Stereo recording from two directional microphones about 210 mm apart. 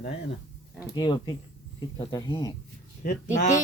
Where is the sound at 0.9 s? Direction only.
20° left (ahead or behind).